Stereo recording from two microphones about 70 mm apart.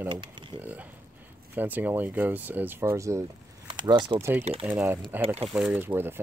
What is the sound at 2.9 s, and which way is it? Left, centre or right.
Speech, right.